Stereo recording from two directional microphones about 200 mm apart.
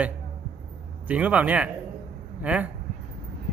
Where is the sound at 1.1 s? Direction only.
5° right (ahead or behind).